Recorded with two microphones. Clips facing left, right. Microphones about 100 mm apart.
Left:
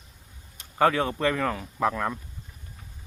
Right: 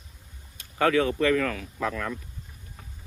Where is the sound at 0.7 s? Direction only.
15° left (ahead or behind).